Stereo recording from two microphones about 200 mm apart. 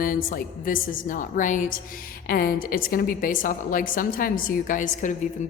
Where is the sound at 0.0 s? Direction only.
45° left (ahead or behind).